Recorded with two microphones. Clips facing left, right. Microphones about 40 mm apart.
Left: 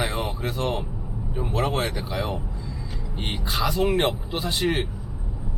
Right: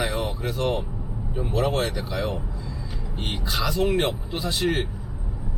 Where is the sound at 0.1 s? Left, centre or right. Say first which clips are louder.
Right 1 dB; left.